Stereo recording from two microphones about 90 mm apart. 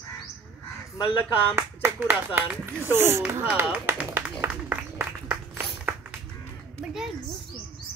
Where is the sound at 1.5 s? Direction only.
25° right (ahead or behind).